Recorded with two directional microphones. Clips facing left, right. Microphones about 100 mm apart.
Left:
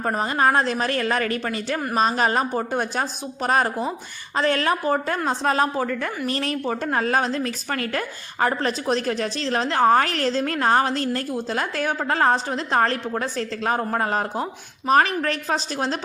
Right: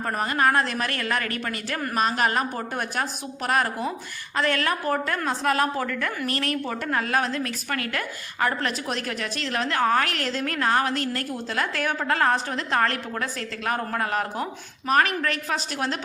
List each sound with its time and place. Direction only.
0.0 s a woman's voice: 25° left (ahead or behind)